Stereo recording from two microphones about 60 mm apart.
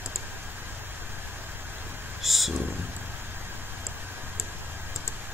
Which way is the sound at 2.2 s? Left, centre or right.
Centre.